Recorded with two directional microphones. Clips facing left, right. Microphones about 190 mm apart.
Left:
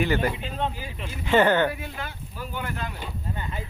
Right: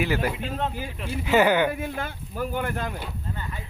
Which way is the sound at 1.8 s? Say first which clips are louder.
Right 5 dB; 50° right (ahead or behind).